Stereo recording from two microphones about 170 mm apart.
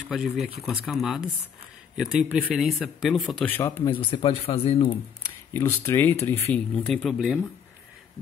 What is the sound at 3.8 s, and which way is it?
Speech, 30° left (ahead or behind).